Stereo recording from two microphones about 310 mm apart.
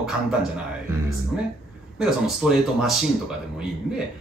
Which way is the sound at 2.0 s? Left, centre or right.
Centre.